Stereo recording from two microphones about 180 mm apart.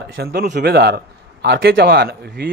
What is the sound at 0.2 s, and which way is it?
A man's voice, 60° right (ahead or behind).